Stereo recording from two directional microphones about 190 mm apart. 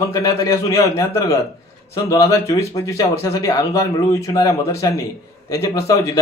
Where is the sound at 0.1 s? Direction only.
15° left (ahead or behind).